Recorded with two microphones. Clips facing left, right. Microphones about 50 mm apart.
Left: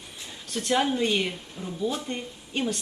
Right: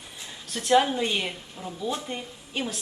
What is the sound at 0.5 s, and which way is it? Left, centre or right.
Speech, centre.